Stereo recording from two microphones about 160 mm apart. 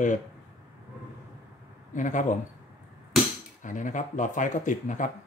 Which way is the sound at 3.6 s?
50° left (ahead or behind).